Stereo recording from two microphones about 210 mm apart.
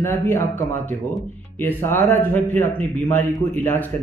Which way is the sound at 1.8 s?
10° left (ahead or behind).